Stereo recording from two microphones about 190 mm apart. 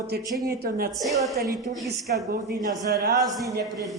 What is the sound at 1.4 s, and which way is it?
Speech, 55° right (ahead or behind).